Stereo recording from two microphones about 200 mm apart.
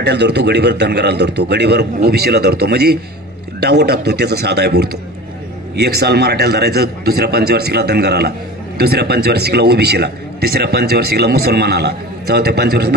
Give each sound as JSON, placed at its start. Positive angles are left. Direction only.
{"t": 0.0, "sound": "a man's voice", "side_deg": -55}